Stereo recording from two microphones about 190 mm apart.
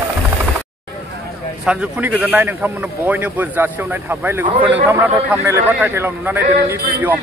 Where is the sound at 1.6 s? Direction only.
5° right (ahead or behind).